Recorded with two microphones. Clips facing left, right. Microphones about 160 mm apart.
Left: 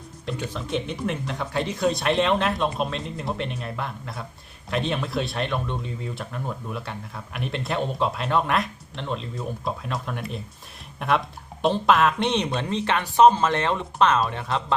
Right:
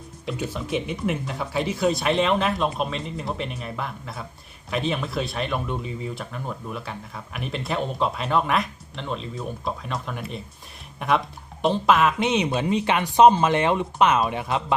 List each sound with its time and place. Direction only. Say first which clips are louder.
0.3 s speech: right 1 dB; 5° right (ahead or behind)